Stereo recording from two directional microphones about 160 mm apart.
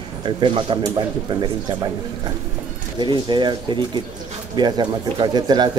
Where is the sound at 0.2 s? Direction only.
30° right (ahead or behind).